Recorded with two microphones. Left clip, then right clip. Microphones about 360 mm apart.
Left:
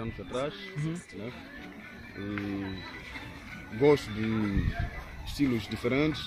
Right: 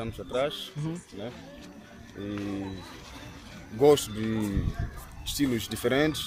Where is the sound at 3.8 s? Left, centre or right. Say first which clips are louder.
Right 3 dB; right.